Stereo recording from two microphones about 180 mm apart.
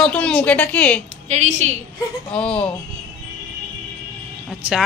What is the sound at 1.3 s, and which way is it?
Speech, 40° right (ahead or behind).